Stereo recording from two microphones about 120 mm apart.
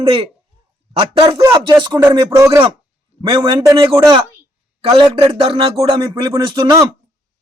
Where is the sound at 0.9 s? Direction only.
50° right (ahead or behind).